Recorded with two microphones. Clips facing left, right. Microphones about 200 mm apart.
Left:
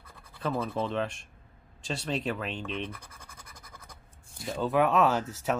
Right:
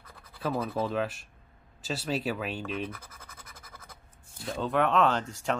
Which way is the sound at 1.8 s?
5° right (ahead or behind).